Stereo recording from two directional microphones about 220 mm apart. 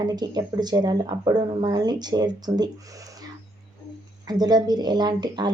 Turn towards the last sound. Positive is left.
turn(degrees=-20)  # may be behind; listen again after turning